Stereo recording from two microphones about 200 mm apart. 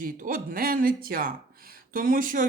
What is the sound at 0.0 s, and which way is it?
Speech, 45° right (ahead or behind).